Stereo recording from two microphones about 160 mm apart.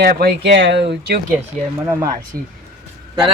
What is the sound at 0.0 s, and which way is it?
Speech, 75° right (ahead or behind).